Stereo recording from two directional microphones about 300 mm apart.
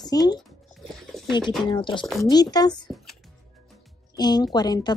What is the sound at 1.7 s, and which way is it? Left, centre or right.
Speech, centre.